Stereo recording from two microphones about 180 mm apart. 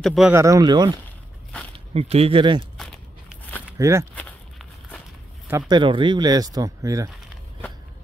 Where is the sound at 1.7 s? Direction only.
35° right (ahead or behind).